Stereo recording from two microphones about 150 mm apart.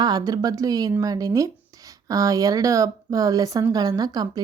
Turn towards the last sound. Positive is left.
turn(degrees=-25)  # may be behind; listen again after turning